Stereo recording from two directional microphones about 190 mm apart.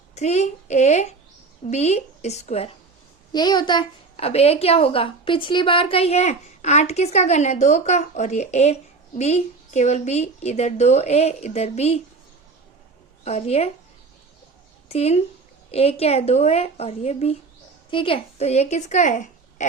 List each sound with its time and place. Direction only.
0.1 s a woman's voice: 35° left (ahead or behind)
3.3 s a woman's voice: 20° left (ahead or behind)
13.2 s a woman's voice: 35° left (ahead or behind)
14.8 s a woman's voice: 35° left (ahead or behind)